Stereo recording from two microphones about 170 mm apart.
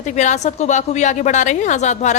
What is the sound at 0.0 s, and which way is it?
A woman's voice, 45° left (ahead or behind).